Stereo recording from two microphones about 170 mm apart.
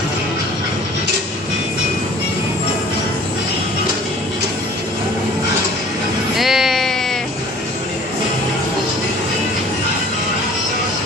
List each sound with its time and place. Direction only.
6.3 s music: centre (ahead or behind)